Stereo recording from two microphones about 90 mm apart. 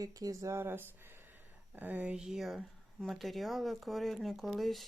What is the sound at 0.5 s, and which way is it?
Speech, 25° right (ahead or behind).